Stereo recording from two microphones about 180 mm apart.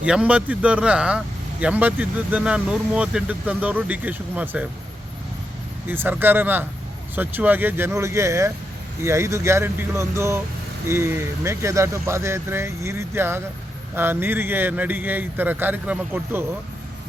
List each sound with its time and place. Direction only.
0.0 s speech: 5° right (ahead or behind)
5.9 s speech: 10° right (ahead or behind)